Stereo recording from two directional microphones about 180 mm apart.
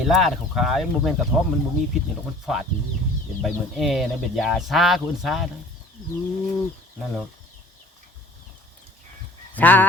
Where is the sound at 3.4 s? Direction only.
Centre (ahead or behind).